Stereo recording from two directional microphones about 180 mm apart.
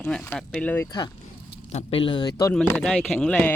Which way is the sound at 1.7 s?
30° left (ahead or behind).